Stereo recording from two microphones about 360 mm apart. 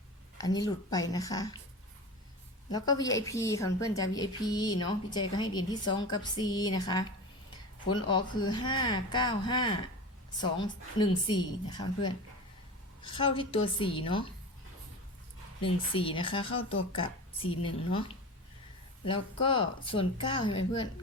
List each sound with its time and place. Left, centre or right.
0.3 s speech: centre
2.6 s speech: centre
15.6 s speech: centre